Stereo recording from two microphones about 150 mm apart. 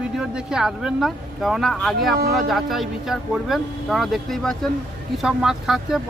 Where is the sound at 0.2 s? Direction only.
5° right (ahead or behind).